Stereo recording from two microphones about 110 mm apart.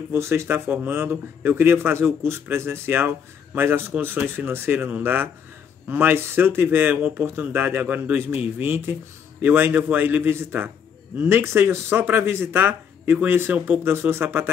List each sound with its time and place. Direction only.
0.1 s a man's voice: 25° right (ahead or behind)